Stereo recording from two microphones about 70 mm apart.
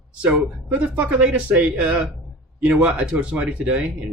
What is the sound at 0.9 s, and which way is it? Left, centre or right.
Speech, centre.